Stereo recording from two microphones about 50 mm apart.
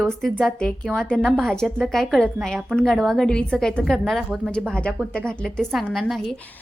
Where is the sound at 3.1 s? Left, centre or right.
Centre.